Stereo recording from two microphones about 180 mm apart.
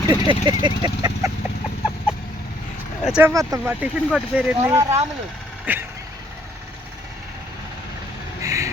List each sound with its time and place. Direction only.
0.1 s speech: 25° right (ahead or behind)
3.0 s speech: 5° right (ahead or behind)
8.4 s a sound: 15° right (ahead or behind)